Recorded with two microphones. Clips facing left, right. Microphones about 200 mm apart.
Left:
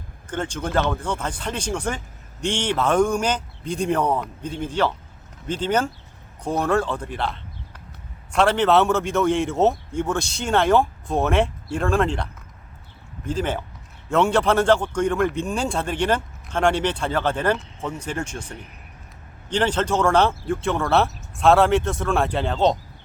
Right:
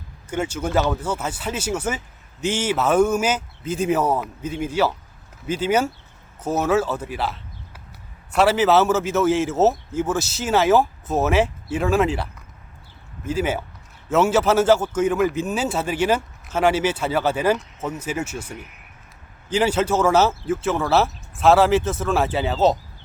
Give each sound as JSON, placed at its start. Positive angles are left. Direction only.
{"t": 0.3, "sound": "a man's voice", "side_deg": -10}